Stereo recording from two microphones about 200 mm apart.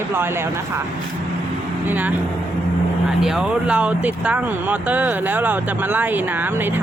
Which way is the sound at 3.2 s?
5° right (ahead or behind).